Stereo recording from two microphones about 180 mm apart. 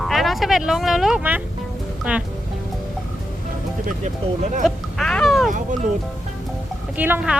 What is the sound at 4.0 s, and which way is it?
Speech, 40° right (ahead or behind).